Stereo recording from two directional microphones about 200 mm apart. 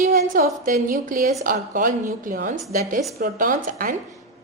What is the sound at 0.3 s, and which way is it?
A woman's voice, 45° right (ahead or behind).